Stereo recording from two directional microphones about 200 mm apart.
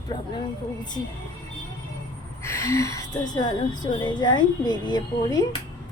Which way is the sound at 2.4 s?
15° left (ahead or behind).